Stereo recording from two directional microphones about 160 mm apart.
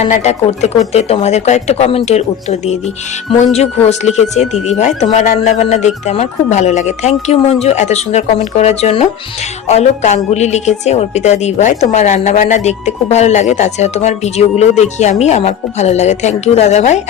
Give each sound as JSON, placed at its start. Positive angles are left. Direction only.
{"t": 0.0, "sound": "a woman's voice", "side_deg": 45}